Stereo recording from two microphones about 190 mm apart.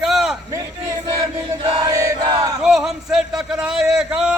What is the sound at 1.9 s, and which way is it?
Battle cry, 15° right (ahead or behind).